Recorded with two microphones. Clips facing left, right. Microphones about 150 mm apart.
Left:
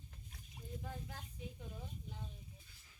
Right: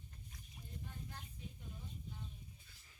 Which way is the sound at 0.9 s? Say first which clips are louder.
Left 4 dB; 90° left.